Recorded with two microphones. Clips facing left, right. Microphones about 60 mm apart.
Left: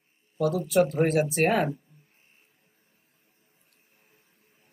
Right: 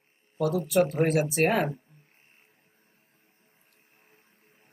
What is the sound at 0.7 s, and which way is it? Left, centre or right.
Speech, centre.